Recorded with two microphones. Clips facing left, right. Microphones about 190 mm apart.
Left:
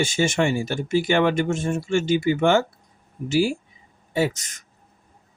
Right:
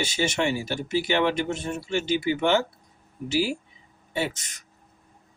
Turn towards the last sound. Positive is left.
turn(degrees=40)  # may be behind; listen again after turning